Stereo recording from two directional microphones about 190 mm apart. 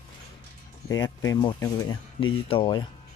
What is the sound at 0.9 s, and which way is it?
Speech, 20° left (ahead or behind).